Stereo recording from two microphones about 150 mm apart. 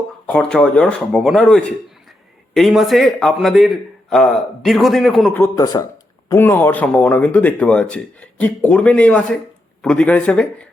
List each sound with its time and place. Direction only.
0.3 s speech: 5° left (ahead or behind)
5.3 s speech: 20° left (ahead or behind)